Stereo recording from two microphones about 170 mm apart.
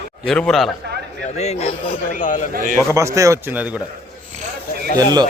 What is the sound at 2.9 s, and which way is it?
Speech, 15° right (ahead or behind).